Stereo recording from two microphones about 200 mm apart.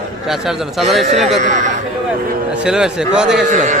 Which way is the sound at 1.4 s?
40° right (ahead or behind).